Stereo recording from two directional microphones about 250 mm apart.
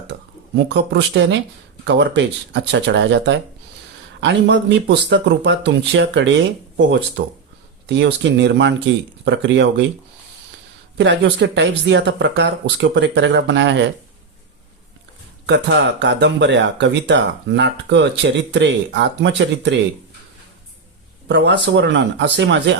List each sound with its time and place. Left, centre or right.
0.1 s speech: right
10.9 s speech: right
15.4 s speech: right
21.2 s speech: right